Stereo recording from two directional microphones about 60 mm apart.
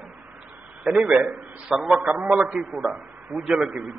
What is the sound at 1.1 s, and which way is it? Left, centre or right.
A man's voice, centre.